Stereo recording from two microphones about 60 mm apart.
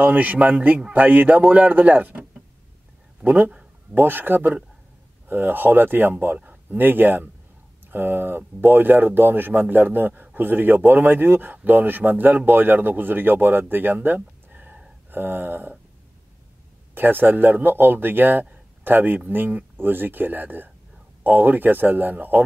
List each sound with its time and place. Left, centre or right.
0.0 s a man's voice: right
3.9 s speech: right
16.9 s speech: right